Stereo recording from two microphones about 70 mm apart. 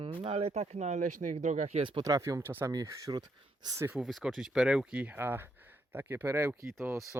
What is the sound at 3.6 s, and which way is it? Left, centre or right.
Speech, right.